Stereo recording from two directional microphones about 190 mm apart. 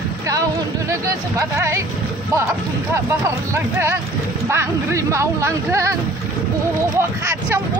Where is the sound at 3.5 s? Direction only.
15° right (ahead or behind).